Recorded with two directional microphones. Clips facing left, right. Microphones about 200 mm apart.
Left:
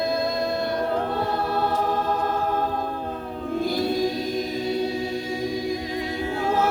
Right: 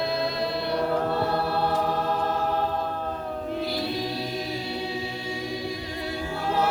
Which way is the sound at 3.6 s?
45° left (ahead or behind).